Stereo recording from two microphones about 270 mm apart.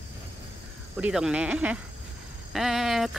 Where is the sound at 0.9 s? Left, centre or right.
Centre.